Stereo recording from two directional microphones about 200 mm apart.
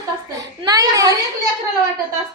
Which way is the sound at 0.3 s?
20° right (ahead or behind).